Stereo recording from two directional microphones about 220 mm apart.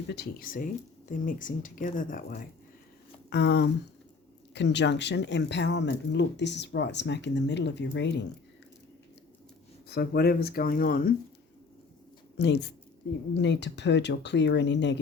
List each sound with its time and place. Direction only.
0.1 s speech: 45° left (ahead or behind)
3.2 s speech: 50° left (ahead or behind)
9.9 s speech: 45° left (ahead or behind)
12.4 s speech: 50° left (ahead or behind)